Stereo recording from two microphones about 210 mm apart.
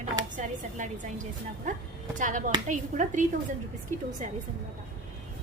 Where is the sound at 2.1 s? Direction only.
35° right (ahead or behind).